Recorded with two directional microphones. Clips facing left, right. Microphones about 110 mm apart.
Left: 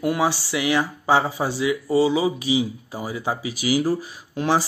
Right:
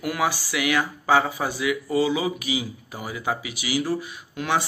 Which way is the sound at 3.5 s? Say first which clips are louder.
Left 8 dB; 45° left (ahead or behind).